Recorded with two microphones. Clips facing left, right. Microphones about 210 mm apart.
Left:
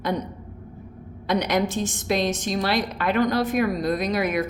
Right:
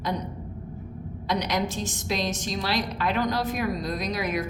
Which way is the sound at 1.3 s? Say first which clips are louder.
Left 5 dB; 55° left (ahead or behind).